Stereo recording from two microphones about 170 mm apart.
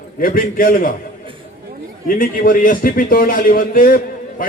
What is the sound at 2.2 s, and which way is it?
A man's voice, 55° left (ahead or behind).